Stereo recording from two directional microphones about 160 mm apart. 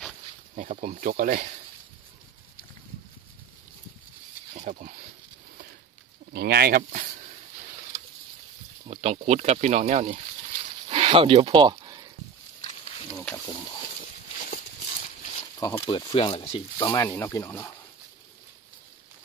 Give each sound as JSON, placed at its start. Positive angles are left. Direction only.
{"t": 0.6, "sound": "speech", "side_deg": -50}
{"t": 4.6, "sound": "speech", "side_deg": -45}
{"t": 6.3, "sound": "speech", "side_deg": -80}
{"t": 8.8, "sound": "speech", "side_deg": -40}
{"t": 13.5, "sound": "speech", "side_deg": 30}
{"t": 14.4, "sound": "a sound", "side_deg": 50}
{"t": 15.6, "sound": "speech", "side_deg": 20}
{"t": 16.9, "sound": "speech", "side_deg": 15}